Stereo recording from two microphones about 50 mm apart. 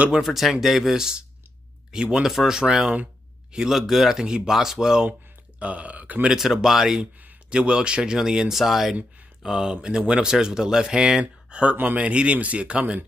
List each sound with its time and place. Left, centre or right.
0.2 s speech: centre
1.9 s speech: centre
5.6 s speech: right
6.2 s speech: centre
7.4 s speech: centre
11.7 s speech: right